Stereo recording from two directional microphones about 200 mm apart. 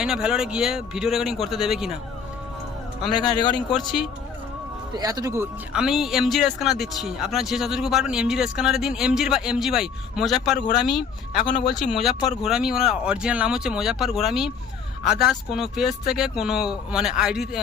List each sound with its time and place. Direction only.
0.0 s speech: 5° right (ahead or behind)
3.2 s a man's voice: 20° left (ahead or behind)
3.7 s speech: centre (ahead or behind)
4.9 s speech: 20° right (ahead or behind); by 17.6 s centre (ahead or behind)